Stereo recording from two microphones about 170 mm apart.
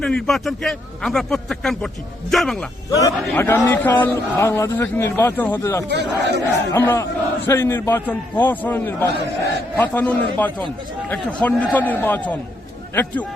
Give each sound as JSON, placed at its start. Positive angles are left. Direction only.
{"t": 0.0, "sound": "a man's voice", "side_deg": 5}
{"t": 3.0, "sound": "a man's voice", "side_deg": 15}
{"t": 5.9, "sound": "speech", "side_deg": -85}
{"t": 6.7, "sound": "a man's voice", "side_deg": 15}